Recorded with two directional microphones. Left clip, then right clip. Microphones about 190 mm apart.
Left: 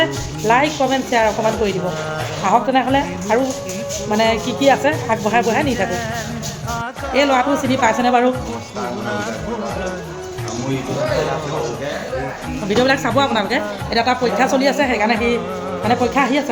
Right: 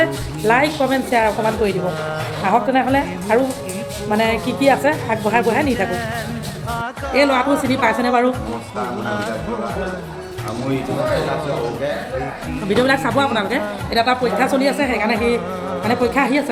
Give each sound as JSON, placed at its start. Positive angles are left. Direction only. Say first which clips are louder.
{"t": 0.0, "sound": "speech", "louder": "right 1 dB", "side_deg": 0}
{"t": 7.1, "sound": "a woman's voice", "louder": "even", "side_deg": 10}
{"t": 12.6, "sound": "a woman's voice", "louder": "even", "side_deg": 10}